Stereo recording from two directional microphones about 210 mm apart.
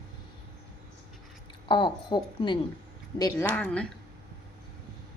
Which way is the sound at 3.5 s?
5° left (ahead or behind).